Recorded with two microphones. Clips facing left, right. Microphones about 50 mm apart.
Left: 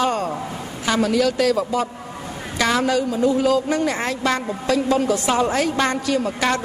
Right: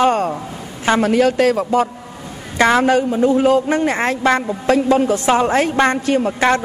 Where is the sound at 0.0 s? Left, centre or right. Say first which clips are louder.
Right 6 dB; right.